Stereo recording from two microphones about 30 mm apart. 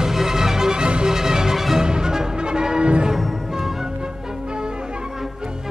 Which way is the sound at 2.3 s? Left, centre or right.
Right.